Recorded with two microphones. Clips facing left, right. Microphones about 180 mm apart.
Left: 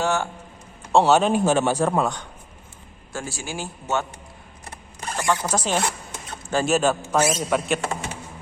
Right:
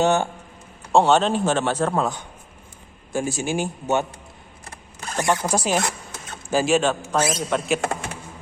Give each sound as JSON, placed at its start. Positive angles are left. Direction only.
{"t": 0.0, "sound": "a man's voice", "side_deg": -20}
{"t": 0.9, "sound": "a man's voice", "side_deg": 5}
{"t": 3.1, "sound": "a man's voice", "side_deg": -15}
{"t": 5.2, "sound": "a man's voice", "side_deg": -15}
{"t": 6.7, "sound": "a man's voice", "side_deg": 5}